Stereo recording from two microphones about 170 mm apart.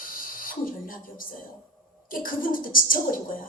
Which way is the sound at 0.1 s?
55° left (ahead or behind).